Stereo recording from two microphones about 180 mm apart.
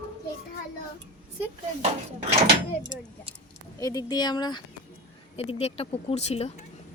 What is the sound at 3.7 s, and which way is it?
Speech, 20° left (ahead or behind).